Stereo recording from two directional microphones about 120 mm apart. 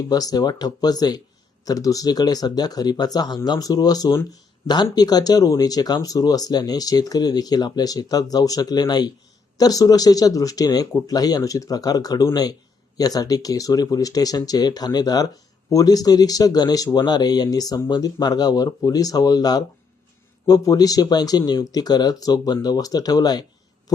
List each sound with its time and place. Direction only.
0.1 s speech: 30° left (ahead or behind)